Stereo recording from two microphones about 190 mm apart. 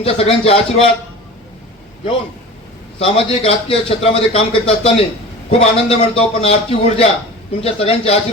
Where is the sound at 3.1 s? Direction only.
30° left (ahead or behind).